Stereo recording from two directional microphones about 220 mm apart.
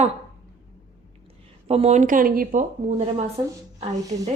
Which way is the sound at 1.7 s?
30° right (ahead or behind).